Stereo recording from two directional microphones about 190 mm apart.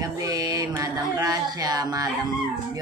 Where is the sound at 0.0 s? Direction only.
20° right (ahead or behind).